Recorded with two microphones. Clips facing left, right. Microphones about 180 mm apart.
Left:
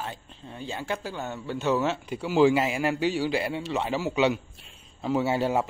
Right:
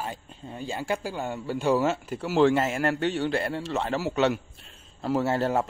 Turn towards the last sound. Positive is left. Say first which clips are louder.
# even
turn(degrees=0)  # may be behind; listen again after turning